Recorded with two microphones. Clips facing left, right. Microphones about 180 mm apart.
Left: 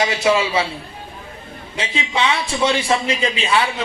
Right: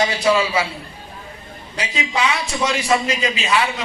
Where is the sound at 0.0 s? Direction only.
25° left (ahead or behind).